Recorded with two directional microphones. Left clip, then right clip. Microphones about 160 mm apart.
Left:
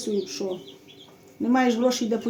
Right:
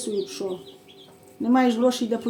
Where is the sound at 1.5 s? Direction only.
25° left (ahead or behind).